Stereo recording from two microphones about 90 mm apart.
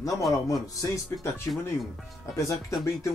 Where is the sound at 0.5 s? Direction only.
35° left (ahead or behind).